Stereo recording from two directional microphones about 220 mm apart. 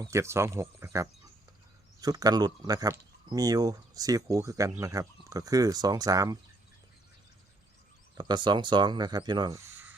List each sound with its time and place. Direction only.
0.0 s speech: 15° right (ahead or behind)
8.1 s speech: 20° right (ahead or behind)